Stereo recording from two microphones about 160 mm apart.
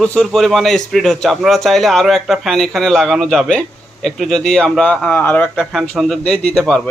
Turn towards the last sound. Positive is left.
turn(degrees=5)  # may be behind; listen again after turning